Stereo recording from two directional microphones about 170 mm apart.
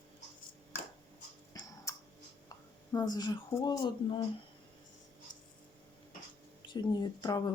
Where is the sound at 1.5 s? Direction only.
20° left (ahead or behind).